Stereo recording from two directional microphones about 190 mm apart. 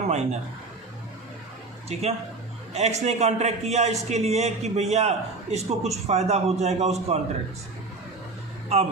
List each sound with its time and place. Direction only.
0.1 s a man's voice: 35° right (ahead or behind)
1.9 s a man's voice: 35° right (ahead or behind)
8.7 s a man's voice: 35° right (ahead or behind)